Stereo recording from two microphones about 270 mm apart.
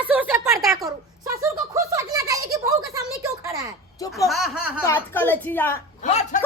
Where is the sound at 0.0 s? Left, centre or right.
Centre.